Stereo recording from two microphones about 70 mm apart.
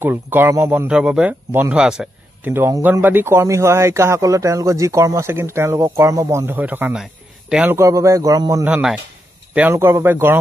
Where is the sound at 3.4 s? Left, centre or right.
Right.